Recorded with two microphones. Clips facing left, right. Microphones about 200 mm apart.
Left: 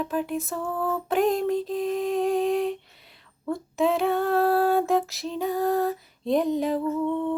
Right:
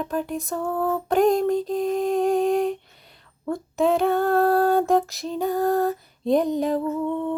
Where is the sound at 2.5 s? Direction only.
45° right (ahead or behind).